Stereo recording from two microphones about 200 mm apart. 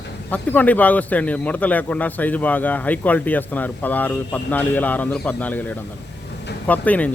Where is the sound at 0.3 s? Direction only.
10° left (ahead or behind).